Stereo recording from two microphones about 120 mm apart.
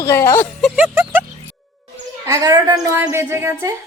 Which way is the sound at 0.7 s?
20° right (ahead or behind).